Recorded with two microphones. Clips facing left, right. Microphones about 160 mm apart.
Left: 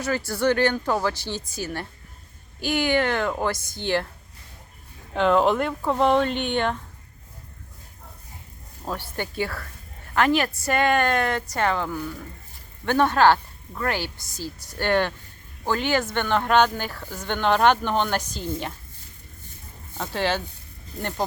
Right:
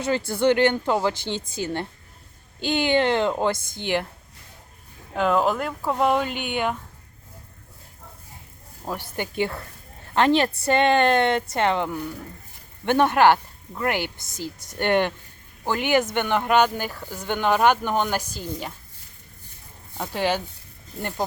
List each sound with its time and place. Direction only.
0.3 s speech: 25° right (ahead or behind)
5.1 s speech: 5° right (ahead or behind)
8.8 s speech: 15° right (ahead or behind)
20.0 s speech: 15° right (ahead or behind)